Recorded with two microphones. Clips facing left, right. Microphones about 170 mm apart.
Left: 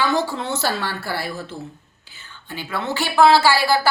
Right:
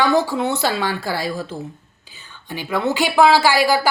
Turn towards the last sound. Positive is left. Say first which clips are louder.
# right 1 dB
turn(degrees=-15)  # may be behind; listen again after turning